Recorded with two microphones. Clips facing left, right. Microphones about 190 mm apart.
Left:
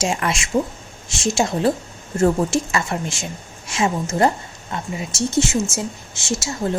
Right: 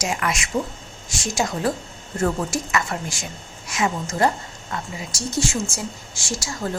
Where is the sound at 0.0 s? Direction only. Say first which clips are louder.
Left 3 dB; 30° left (ahead or behind).